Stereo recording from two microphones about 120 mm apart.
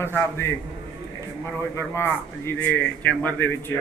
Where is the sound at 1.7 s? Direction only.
20° left (ahead or behind).